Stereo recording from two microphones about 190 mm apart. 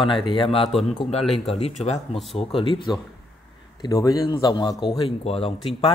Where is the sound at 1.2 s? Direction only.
Centre (ahead or behind).